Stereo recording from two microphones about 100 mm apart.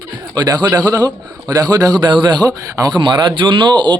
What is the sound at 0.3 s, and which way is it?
A man's voice, 45° right (ahead or behind).